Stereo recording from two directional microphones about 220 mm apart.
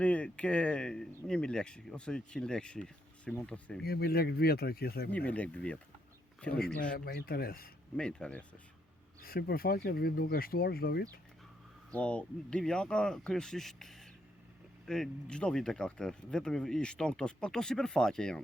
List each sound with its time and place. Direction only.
0.0 s speech: 5° left (ahead or behind)
3.8 s speech: 45° left (ahead or behind)
5.1 s speech: 5° left (ahead or behind)
6.8 s speech: 40° left (ahead or behind)
7.9 s speech: 5° left (ahead or behind)
9.2 s speech: 40° left (ahead or behind)
11.9 s speech: 5° left (ahead or behind)